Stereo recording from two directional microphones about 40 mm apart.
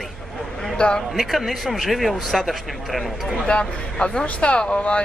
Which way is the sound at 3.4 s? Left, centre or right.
Left.